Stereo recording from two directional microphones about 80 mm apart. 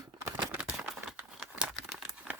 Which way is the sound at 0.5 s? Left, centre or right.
Centre.